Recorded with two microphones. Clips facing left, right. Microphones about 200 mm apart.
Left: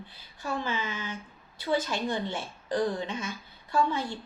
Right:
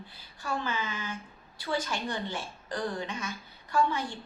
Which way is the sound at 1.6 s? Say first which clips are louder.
Left 4 dB; 20° left (ahead or behind).